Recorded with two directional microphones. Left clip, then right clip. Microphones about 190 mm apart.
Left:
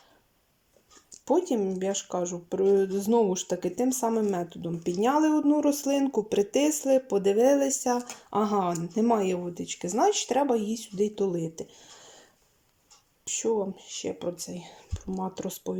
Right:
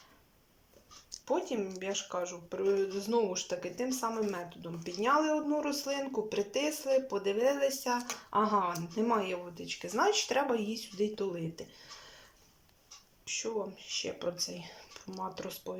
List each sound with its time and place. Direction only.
1.2 s speech: 35° left (ahead or behind)
13.2 s speech: 35° left (ahead or behind)